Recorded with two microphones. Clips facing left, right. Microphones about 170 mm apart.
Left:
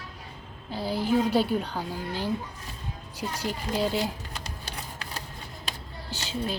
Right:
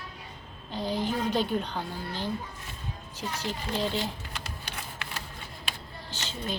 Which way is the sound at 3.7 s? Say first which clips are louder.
Left 3 dB; 10° left (ahead or behind).